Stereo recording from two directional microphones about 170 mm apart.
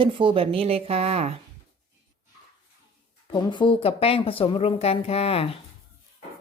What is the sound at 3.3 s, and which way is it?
Speech, 25° left (ahead or behind).